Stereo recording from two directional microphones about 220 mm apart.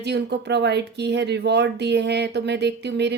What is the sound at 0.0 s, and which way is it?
Speech, 50° right (ahead or behind).